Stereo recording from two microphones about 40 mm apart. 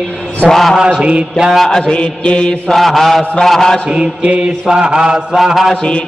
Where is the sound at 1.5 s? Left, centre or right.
Centre.